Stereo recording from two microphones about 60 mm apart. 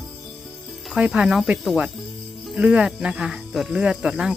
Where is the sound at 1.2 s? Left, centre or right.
Centre.